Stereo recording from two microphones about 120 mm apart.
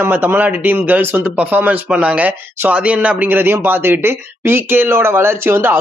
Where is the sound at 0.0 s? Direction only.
15° right (ahead or behind).